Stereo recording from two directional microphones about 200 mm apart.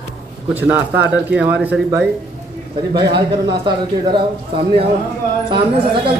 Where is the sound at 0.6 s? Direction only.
10° right (ahead or behind).